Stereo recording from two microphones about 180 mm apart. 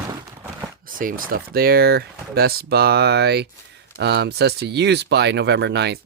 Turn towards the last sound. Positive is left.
turn(degrees=-70)  # may be behind; listen again after turning